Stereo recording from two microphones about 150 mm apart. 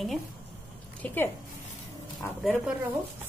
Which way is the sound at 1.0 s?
15° left (ahead or behind).